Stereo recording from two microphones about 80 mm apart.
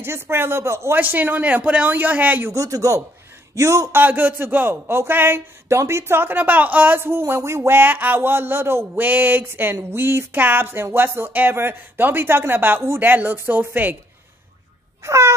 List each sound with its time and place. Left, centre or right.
0.0 s speech: right
0.9 s a man's voice: right
2.5 s speech: right
4.0 s a man's voice: right
15.0 s speech: right